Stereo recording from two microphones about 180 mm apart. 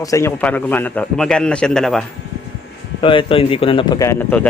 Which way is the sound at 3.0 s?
30° left (ahead or behind).